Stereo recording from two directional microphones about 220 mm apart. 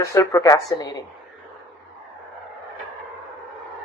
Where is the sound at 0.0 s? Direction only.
15° left (ahead or behind).